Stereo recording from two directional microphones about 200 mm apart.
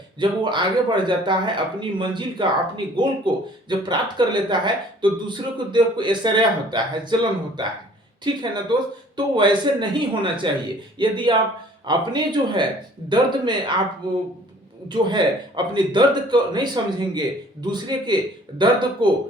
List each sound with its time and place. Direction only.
0.2 s speech: 25° right (ahead or behind)
14.8 s speech: 20° right (ahead or behind)